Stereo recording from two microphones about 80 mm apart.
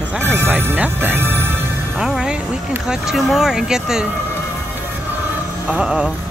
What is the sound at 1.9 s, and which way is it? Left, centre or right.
Speech, centre.